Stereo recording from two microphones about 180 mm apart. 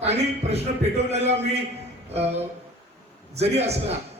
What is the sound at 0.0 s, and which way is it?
A man's voice, 35° right (ahead or behind).